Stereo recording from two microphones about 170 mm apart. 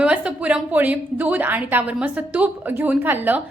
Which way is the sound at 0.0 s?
5° right (ahead or behind).